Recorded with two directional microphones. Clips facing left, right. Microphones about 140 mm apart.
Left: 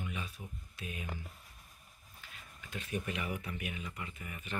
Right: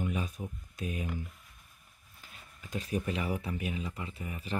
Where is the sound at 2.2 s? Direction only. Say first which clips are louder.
Right 2 dB; 40° right (ahead or behind).